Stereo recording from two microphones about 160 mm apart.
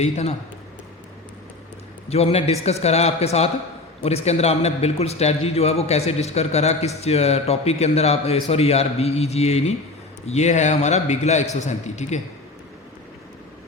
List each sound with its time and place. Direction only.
0.0 s a man's voice: 40° left (ahead or behind)
2.0 s a man's voice: 40° left (ahead or behind)